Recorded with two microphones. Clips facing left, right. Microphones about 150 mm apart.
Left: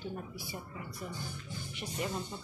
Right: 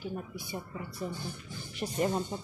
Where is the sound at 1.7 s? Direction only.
40° right (ahead or behind).